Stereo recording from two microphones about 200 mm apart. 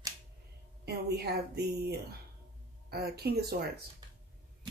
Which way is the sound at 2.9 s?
50° right (ahead or behind).